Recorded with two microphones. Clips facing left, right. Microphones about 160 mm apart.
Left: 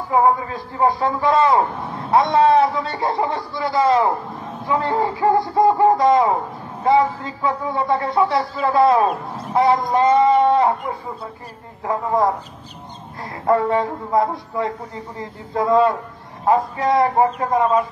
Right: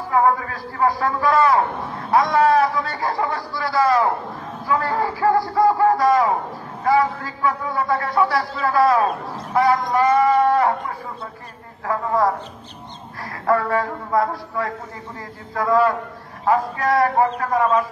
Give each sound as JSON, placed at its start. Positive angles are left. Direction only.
{"t": 0.1, "sound": "a man's voice", "side_deg": 20}
{"t": 13.5, "sound": "a man's voice", "side_deg": 25}